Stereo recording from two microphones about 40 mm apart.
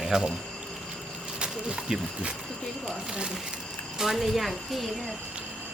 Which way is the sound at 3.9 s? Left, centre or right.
Centre.